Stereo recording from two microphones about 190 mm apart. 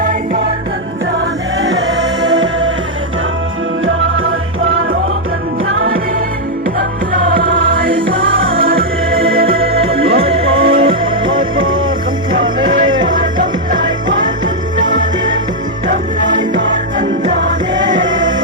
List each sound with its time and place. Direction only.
0.0 s music: 45° right (ahead or behind)
1.7 s music: 75° right (ahead or behind)
3.8 s music: 90° right
7.3 s music: 75° right (ahead or behind)
7.7 s music: 65° right (ahead or behind)
8.2 s music: 90° right
8.6 s music: 50° right (ahead or behind)
9.0 s music: 30° right (ahead or behind)
9.3 s music: 50° right (ahead or behind)
9.6 s music: 30° right (ahead or behind)
14.8 s music: 45° right (ahead or behind)